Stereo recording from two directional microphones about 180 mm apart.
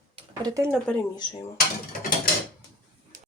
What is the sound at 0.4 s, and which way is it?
Speech, 20° right (ahead or behind).